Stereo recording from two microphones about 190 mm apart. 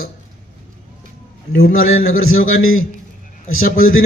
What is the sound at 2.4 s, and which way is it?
Speech, 90° left.